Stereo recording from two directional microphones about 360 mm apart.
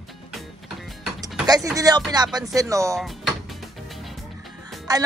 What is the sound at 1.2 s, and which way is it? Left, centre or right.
Speech, centre.